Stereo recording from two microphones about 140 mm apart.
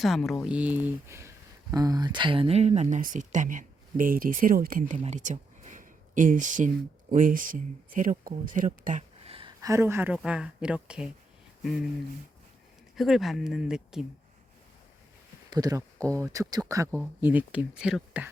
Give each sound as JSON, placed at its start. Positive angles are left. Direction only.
{"t": 0.0, "sound": "speech", "side_deg": 0}
{"t": 0.4, "sound": "speech", "side_deg": -10}
{"t": 8.5, "sound": "a sound", "side_deg": -70}
{"t": 9.6, "sound": "speech", "side_deg": -20}
{"t": 13.0, "sound": "speech", "side_deg": 0}
{"t": 15.4, "sound": "speech", "side_deg": -25}